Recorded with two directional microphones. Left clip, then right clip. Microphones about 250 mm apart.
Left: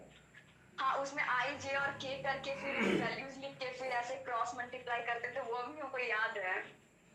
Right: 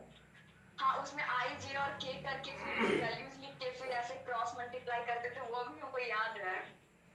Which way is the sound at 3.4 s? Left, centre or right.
Left.